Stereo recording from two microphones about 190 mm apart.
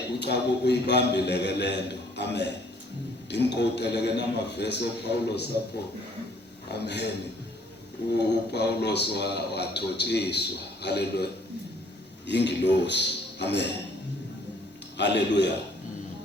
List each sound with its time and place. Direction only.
0.2 s a man's voice: 60° left (ahead or behind)
6.7 s a man's voice: 60° left (ahead or behind)
8.2 s a man's voice: 60° left (ahead or behind)
14.9 s a man's voice: 65° left (ahead or behind)